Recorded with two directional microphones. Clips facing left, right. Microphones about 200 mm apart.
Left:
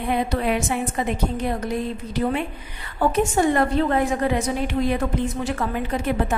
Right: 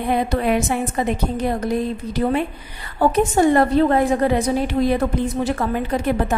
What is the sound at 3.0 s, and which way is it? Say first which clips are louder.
A woman's voice: right 3 dB; 35° right (ahead or behind).